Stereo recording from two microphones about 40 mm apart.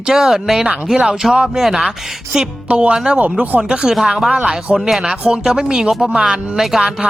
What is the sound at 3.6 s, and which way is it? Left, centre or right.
Speech, centre.